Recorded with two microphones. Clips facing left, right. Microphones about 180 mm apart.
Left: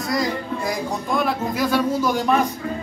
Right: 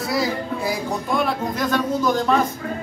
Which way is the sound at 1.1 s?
5° left (ahead or behind).